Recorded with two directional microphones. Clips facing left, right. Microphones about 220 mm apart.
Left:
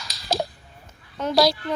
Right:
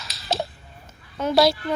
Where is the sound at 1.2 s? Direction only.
5° right (ahead or behind).